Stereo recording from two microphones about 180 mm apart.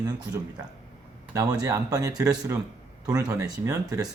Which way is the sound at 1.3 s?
20° right (ahead or behind).